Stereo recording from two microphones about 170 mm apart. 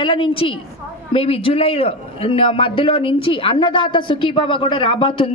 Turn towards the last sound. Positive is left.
turn(degrees=30)  # may be behind; listen again after turning